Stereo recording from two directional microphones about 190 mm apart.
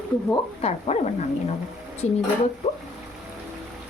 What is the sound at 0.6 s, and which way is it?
Speech, 35° left (ahead or behind).